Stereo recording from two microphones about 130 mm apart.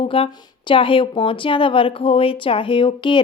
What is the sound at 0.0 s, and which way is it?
A woman's voice, 45° left (ahead or behind).